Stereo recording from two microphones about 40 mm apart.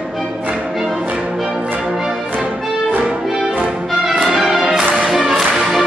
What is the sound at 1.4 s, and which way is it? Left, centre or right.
Music, centre.